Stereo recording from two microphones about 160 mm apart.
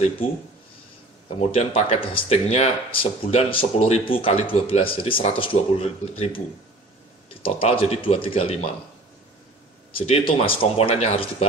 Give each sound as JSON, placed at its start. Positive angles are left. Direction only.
{"t": 1.4, "sound": "speech", "side_deg": 40}
{"t": 7.4, "sound": "speech", "side_deg": 35}
{"t": 9.9, "sound": "speech", "side_deg": 40}